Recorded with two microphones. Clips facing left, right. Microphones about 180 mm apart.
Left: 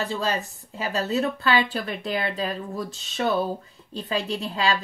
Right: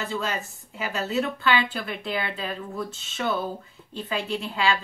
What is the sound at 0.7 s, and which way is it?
A woman's voice, 35° left (ahead or behind).